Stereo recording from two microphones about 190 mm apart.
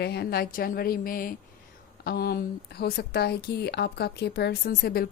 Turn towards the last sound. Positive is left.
turn(degrees=55)  # may be behind; listen again after turning